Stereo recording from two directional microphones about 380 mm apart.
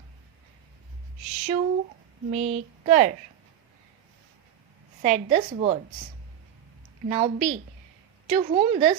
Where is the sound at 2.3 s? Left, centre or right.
Centre.